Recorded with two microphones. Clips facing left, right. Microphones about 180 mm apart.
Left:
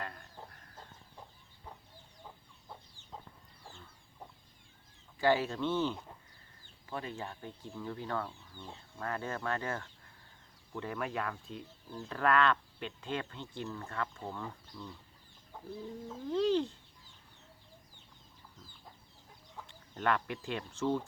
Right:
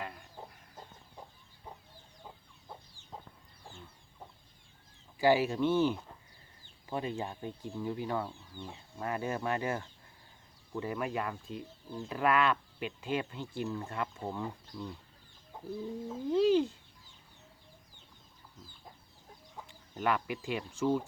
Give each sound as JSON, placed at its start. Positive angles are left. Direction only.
{"t": 0.0, "sound": "chicken", "side_deg": -10}
{"t": 5.2, "sound": "speech", "side_deg": -10}
{"t": 16.0, "sound": "speech", "side_deg": -5}
{"t": 19.5, "sound": "speech", "side_deg": -5}